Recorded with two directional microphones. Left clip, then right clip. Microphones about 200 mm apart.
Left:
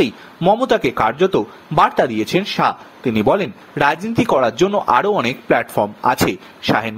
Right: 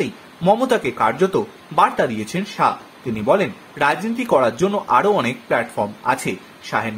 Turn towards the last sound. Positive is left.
turn(degrees=40)  # may be behind; listen again after turning